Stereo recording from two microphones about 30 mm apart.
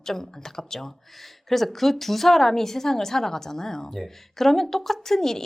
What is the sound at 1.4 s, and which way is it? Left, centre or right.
A woman's voice, centre.